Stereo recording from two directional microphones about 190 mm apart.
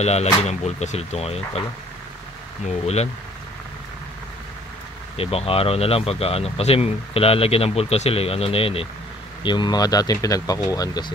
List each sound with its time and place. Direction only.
0.0 s speech: 35° left (ahead or behind)
5.1 s speech: 30° left (ahead or behind)